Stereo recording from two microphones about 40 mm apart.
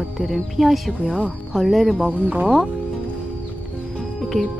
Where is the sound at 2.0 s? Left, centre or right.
Right.